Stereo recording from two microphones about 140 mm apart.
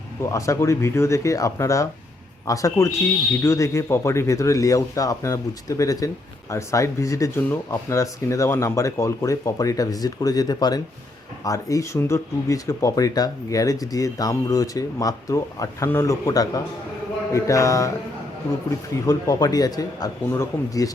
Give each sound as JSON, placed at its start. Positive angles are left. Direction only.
{"t": 0.3, "sound": "speech", "side_deg": 20}
{"t": 19.0, "sound": "speech", "side_deg": 25}